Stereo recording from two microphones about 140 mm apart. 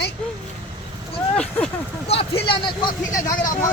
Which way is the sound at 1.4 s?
5° left (ahead or behind).